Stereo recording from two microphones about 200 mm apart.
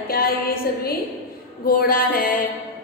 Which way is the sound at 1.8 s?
45° left (ahead or behind).